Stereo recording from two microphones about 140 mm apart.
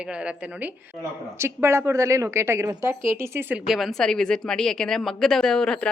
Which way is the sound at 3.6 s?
Centre (ahead or behind).